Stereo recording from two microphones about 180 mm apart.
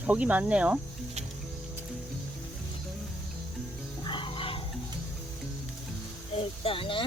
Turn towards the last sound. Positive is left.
turn(degrees=30)  # may be behind; listen again after turning